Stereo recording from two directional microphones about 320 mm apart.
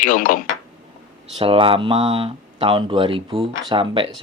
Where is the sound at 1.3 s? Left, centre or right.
Centre.